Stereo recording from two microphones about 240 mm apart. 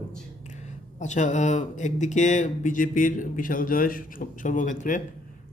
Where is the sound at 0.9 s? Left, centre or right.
Left.